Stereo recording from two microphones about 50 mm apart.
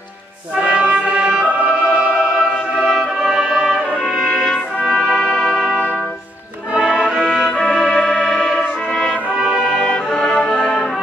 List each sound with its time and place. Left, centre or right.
0.6 s music: centre
2.7 s music: centre
3.3 s music: centre
4.9 s brass instrument: centre
5.3 s music: centre
7.2 s music: centre
8.2 s brass instrument: centre
9.8 s music: centre